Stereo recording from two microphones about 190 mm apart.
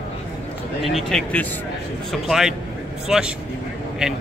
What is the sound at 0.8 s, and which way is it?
Speech, centre (ahead or behind).